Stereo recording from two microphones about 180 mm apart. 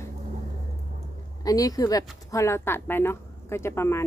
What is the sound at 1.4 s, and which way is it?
A woman's voice, 20° left (ahead or behind).